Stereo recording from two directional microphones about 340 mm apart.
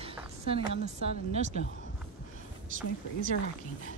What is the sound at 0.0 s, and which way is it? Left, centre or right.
Speech, centre.